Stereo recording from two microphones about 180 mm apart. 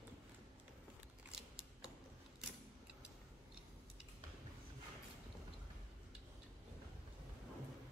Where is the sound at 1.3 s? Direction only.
5° right (ahead or behind).